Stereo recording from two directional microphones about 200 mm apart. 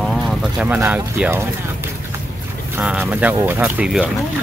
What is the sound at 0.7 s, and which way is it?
Speech, 10° right (ahead or behind).